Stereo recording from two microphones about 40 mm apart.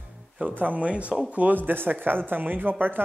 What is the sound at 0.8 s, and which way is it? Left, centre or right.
Speech, right.